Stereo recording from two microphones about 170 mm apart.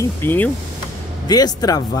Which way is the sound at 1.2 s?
20° left (ahead or behind).